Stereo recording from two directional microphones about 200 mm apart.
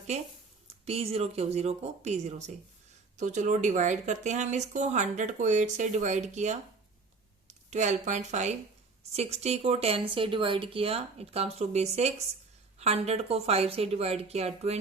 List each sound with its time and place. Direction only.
0.9 s speech: 30° right (ahead or behind)